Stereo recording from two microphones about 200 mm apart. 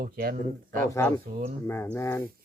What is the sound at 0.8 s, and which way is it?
Speech, 15° left (ahead or behind).